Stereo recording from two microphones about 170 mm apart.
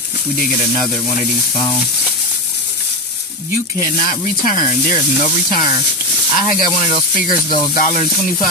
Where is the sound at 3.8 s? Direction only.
50° left (ahead or behind).